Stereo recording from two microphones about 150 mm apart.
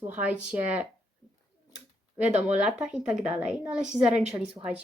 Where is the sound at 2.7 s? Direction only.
5° right (ahead or behind).